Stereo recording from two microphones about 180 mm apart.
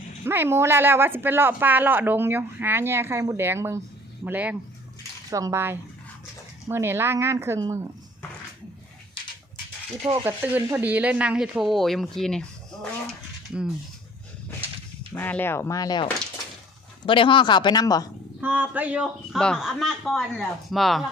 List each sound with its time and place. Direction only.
0.3 s speech: 10° right (ahead or behind)
10.2 s speech: 10° right (ahead or behind)
15.1 s speech: 10° left (ahead or behind)
17.1 s speech: 30° left (ahead or behind)
18.3 s speech: 10° right (ahead or behind)